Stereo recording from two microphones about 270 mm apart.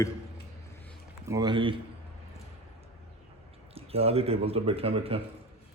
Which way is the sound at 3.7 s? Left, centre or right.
Right.